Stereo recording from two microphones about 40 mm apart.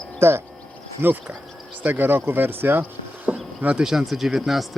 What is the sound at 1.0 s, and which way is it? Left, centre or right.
Speech, right.